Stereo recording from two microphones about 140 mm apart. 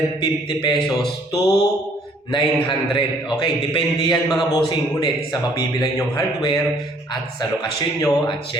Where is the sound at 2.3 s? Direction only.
35° left (ahead or behind).